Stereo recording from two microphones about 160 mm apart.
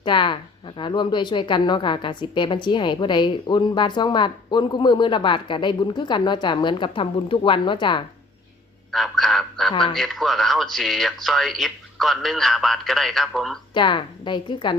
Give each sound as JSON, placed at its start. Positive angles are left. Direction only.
{"t": 0.0, "sound": "a woman's voice", "side_deg": 30}
{"t": 8.9, "sound": "fowl", "side_deg": 0}
{"t": 9.9, "sound": "speech", "side_deg": 0}
{"t": 13.7, "sound": "a woman's voice", "side_deg": 30}